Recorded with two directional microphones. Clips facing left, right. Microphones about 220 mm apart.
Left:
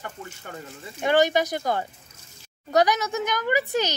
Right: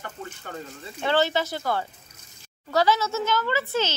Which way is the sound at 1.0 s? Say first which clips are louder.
Left 3 dB; 15° left (ahead or behind).